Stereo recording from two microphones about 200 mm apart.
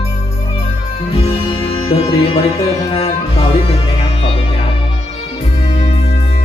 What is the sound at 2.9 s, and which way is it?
Music, 30° left (ahead or behind).